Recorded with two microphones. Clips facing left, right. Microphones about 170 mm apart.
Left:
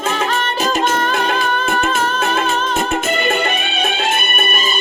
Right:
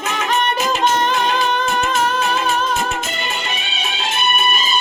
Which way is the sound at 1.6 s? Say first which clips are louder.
Left 1 dB; 55° left (ahead or behind).